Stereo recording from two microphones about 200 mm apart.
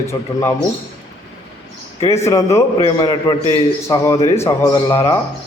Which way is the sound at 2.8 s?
25° left (ahead or behind).